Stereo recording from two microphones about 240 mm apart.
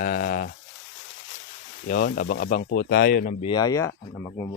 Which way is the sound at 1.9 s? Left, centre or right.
Left.